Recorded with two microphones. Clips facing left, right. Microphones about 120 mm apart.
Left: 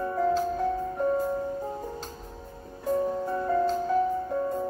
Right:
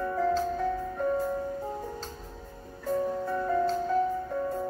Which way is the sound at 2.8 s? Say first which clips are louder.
Left 2 dB; 15° left (ahead or behind).